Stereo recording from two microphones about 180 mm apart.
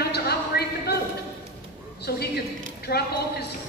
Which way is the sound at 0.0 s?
65° left (ahead or behind).